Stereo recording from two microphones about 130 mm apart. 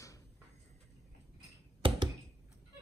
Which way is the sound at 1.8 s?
40° right (ahead or behind).